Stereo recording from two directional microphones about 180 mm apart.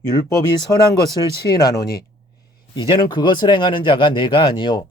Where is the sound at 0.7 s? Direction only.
15° left (ahead or behind).